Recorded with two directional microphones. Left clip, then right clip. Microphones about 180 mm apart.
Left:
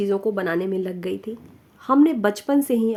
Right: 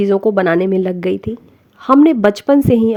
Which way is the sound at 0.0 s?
40° right (ahead or behind).